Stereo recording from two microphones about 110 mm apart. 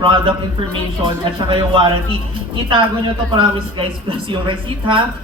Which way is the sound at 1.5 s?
45° right (ahead or behind).